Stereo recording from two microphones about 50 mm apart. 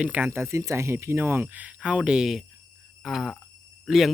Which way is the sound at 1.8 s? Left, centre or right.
Centre.